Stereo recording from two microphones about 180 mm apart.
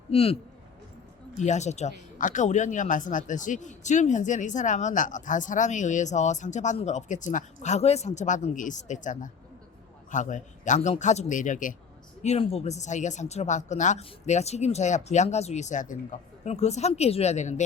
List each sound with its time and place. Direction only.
0.1 s speech: 30° left (ahead or behind)
1.4 s a man's voice: 40° left (ahead or behind)